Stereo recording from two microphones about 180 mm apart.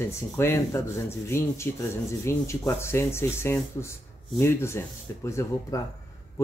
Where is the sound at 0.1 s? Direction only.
15° left (ahead or behind).